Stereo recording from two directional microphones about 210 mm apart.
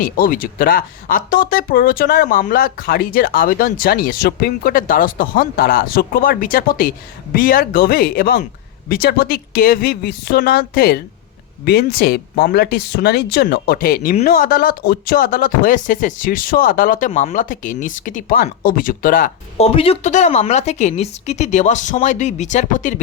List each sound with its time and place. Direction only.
0.0 s a woman's voice: 40° left (ahead or behind)
19.6 s a woman's voice: 25° left (ahead or behind)